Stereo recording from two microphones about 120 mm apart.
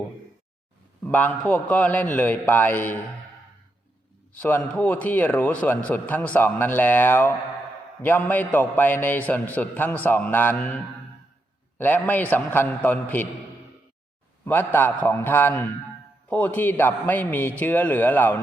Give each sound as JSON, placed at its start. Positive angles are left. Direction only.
{"t": 1.0, "sound": "a man's voice", "side_deg": 15}
{"t": 4.4, "sound": "a man's voice", "side_deg": 15}
{"t": 14.4, "sound": "a man's voice", "side_deg": 15}